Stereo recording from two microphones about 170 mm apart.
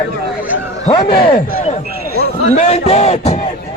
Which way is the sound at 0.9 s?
25° left (ahead or behind).